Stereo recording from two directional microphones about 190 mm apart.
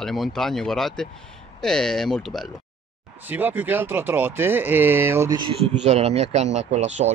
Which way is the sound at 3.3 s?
10° right (ahead or behind).